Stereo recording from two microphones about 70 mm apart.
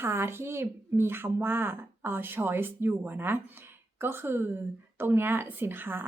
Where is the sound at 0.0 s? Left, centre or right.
Right.